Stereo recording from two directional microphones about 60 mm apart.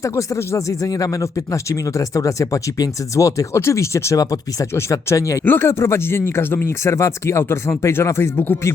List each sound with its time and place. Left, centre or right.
0.0 s speech: left
4.7 s speech: left
5.5 s speech: left